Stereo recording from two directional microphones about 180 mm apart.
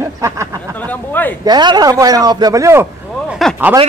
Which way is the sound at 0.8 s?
10° left (ahead or behind).